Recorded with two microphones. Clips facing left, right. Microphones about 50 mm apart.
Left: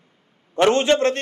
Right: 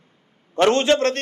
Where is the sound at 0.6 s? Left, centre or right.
Centre.